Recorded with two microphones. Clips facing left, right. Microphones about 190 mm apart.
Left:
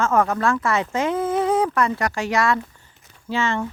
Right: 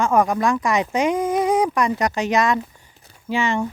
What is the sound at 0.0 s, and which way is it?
Speech, 15° right (ahead or behind).